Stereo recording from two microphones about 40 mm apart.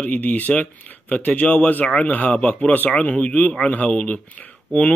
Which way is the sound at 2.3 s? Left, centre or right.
Left.